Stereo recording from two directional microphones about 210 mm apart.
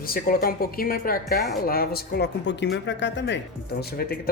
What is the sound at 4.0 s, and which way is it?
Speech, 45° left (ahead or behind).